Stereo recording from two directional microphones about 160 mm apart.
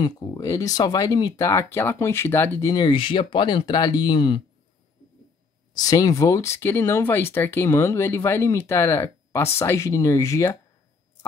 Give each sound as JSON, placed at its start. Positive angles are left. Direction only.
{"t": 0.0, "sound": "speech", "side_deg": 20}
{"t": 2.7, "sound": "speech", "side_deg": 30}
{"t": 5.8, "sound": "speech", "side_deg": 20}